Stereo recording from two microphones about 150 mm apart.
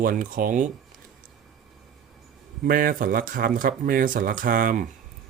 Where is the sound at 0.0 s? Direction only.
70° right (ahead or behind).